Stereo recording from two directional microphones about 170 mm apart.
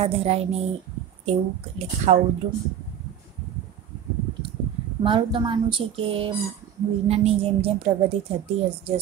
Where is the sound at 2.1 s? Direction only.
40° right (ahead or behind).